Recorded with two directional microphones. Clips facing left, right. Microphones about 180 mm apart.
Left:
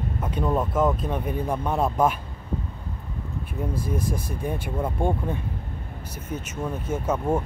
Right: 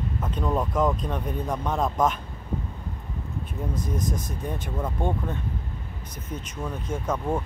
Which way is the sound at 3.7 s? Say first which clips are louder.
Left 1 dB; 10° left (ahead or behind).